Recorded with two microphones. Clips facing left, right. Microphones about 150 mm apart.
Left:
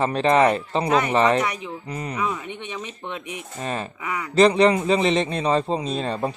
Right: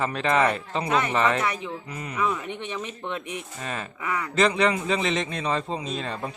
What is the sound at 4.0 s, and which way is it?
Speech, 15° left (ahead or behind).